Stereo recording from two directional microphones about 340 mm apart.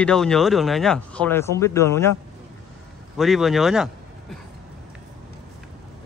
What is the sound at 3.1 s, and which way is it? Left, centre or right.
Speech, centre.